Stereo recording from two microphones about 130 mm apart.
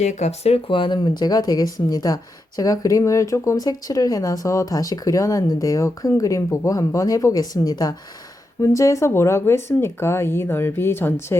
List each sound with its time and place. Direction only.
0.0 s speech: 60° left (ahead or behind); by 11.3 s 15° left (ahead or behind)